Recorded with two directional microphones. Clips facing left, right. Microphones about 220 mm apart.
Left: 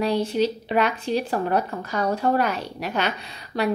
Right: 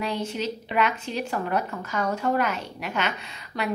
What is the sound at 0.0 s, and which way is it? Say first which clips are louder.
Speech: left 7 dB; 35° left (ahead or behind).